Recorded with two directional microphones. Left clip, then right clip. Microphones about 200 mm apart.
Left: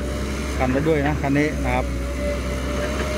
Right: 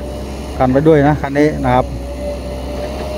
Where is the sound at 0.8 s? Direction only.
25° right (ahead or behind).